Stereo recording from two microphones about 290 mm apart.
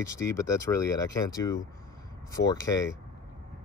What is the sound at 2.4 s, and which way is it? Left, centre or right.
Speech, left.